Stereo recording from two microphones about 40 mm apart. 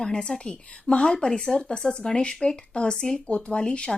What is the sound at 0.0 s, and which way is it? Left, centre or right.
A woman's voice, centre.